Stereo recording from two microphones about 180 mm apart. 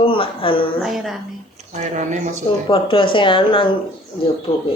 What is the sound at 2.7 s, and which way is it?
A woman's voice, 30° left (ahead or behind).